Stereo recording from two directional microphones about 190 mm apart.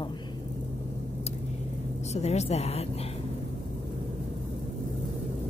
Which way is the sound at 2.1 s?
35° left (ahead or behind).